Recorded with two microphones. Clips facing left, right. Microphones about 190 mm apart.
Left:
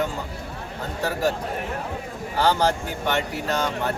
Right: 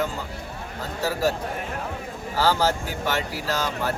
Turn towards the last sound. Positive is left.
turn(degrees=0)  # may be behind; listen again after turning